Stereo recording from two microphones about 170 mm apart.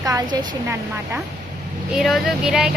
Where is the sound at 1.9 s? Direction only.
Centre (ahead or behind).